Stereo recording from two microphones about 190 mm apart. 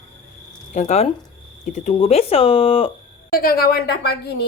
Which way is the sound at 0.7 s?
35° left (ahead or behind).